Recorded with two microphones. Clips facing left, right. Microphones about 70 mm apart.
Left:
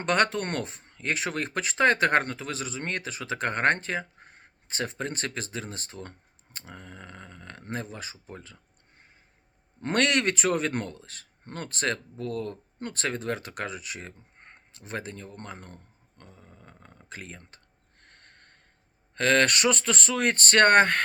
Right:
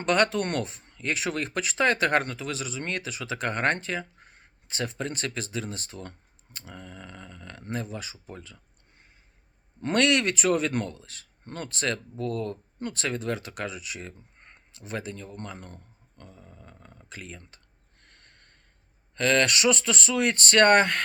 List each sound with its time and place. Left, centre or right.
0.0 s speech: left
18.0 s snort: left
19.1 s speech: left